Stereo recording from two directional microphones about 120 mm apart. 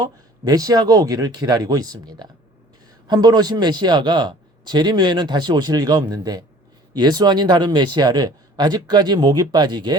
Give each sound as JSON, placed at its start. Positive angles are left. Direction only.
{"t": 0.0, "sound": "a man's voice", "side_deg": -30}